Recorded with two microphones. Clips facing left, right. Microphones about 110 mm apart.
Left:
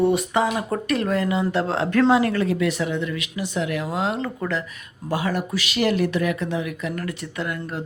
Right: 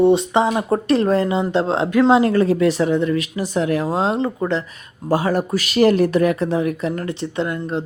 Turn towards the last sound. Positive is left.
turn(degrees=-25)  # may be behind; listen again after turning